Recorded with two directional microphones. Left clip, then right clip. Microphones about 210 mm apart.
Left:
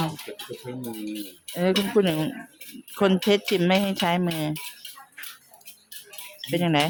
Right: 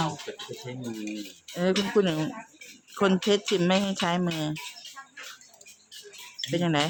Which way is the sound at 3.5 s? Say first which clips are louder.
Left 3 dB; 5° left (ahead or behind).